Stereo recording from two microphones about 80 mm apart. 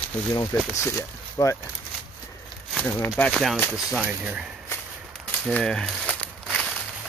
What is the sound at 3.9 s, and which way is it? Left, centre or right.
Speech, centre.